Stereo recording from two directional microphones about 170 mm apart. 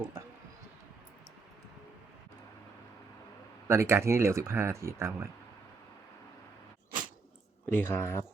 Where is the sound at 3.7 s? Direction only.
15° right (ahead or behind).